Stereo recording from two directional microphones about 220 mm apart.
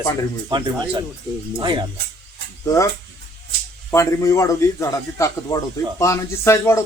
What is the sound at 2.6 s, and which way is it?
Speech, 15° left (ahead or behind).